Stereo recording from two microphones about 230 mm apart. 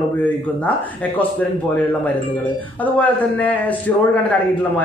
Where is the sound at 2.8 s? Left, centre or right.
Centre.